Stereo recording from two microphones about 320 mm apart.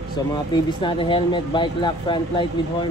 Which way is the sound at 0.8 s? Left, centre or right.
Centre.